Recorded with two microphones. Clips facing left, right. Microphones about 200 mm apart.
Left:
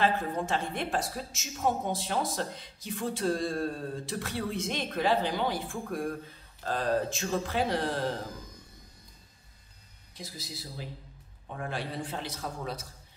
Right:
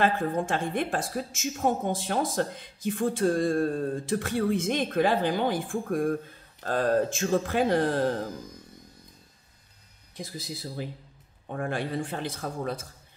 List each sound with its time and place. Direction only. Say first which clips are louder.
0.0 s a woman's voice: right 3 dB; 50° right (ahead or behind)
10.1 s a woman's voice: right 5 dB; 50° right (ahead or behind)